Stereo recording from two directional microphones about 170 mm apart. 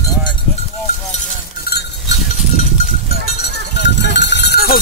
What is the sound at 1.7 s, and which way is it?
Goat, 75° left (ahead or behind).